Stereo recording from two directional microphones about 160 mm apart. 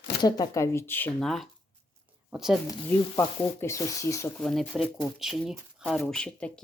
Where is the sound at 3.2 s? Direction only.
20° left (ahead or behind).